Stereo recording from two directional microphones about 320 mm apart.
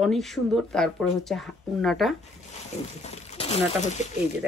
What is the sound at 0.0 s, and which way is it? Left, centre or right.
A woman's voice, centre.